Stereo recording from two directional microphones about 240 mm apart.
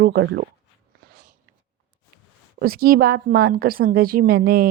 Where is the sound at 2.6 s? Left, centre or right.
Right.